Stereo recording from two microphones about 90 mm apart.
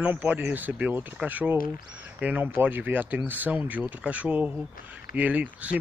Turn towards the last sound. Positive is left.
turn(degrees=-15)  # may be behind; listen again after turning